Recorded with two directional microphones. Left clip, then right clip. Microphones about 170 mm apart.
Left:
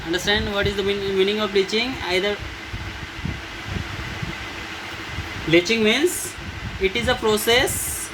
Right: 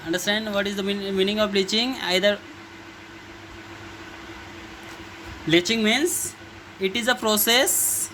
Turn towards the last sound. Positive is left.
turn(degrees=-65)  # may be behind; listen again after turning